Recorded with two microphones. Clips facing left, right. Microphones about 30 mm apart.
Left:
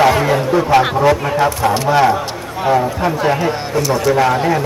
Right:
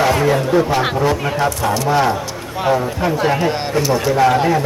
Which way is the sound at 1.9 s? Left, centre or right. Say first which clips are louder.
Left 3 dB; centre.